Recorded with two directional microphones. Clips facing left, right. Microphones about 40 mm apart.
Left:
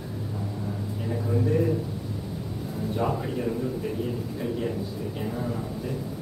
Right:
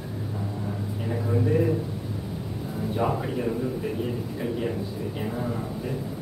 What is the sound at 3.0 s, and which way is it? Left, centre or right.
Speech, right.